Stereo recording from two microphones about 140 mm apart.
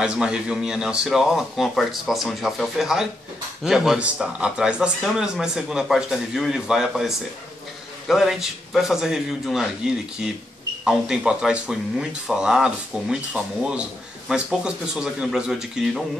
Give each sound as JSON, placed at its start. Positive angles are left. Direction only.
{"t": 0.0, "sound": "speech", "side_deg": -5}
{"t": 10.9, "sound": "speech", "side_deg": -5}